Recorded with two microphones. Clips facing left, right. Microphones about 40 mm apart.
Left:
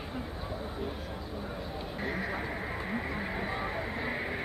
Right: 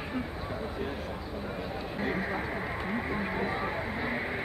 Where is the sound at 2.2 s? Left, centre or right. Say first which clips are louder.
Right 2 dB; centre.